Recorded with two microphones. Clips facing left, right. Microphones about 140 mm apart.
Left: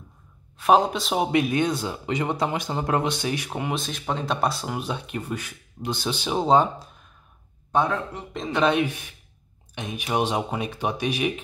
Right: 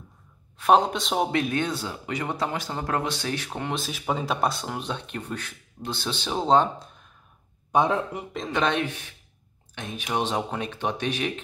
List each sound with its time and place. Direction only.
0.6 s speech: centre (ahead or behind)
1.3 s speech: 15° left (ahead or behind)
3.7 s speech: 5° right (ahead or behind)
7.7 s speech: 15° right (ahead or behind)
8.3 s speech: centre (ahead or behind)